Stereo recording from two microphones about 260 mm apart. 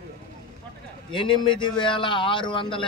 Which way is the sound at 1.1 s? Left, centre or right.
Centre.